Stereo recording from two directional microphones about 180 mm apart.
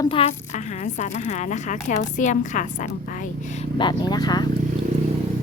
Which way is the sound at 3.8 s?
25° left (ahead or behind).